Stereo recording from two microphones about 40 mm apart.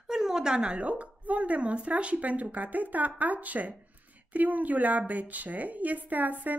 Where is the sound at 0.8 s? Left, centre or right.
Right.